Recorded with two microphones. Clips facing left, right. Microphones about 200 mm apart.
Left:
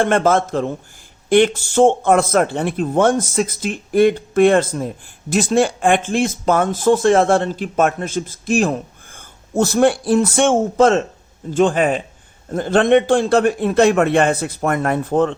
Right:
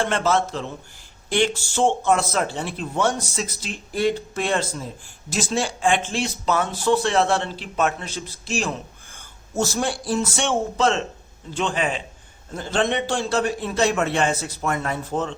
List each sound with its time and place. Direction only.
0.0 s speech: 50° left (ahead or behind)